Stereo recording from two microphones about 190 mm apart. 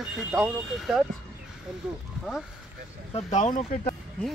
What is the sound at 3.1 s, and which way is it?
Speech, 40° left (ahead or behind).